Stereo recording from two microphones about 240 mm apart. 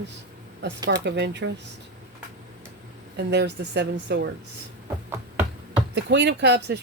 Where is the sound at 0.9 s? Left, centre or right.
Right.